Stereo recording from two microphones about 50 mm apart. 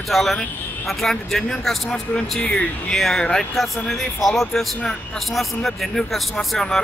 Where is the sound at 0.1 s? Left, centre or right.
Centre.